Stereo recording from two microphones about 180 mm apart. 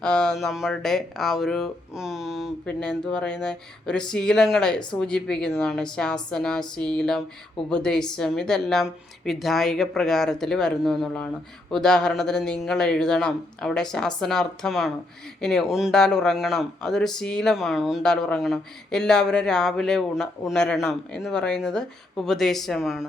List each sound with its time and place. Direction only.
0.0 s speech: 5° left (ahead or behind)